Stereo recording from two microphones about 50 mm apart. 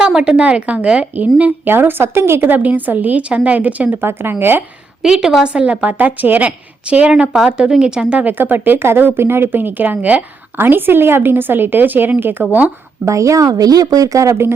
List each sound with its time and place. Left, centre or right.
0.0 s a woman's voice: centre; by 1.7 s right
1.7 s a woman's voice: right
2.5 s speech: right
4.0 s a woman's voice: right
5.0 s a woman's voice: centre
8.2 s speech: right
10.6 s a woman's voice: right
13.1 s a woman's voice: right
14.2 s speech: right